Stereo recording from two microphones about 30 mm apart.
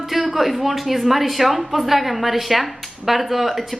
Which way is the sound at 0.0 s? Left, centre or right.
Centre.